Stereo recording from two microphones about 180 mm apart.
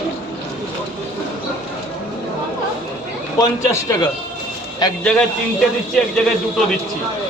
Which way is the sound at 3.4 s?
20° left (ahead or behind).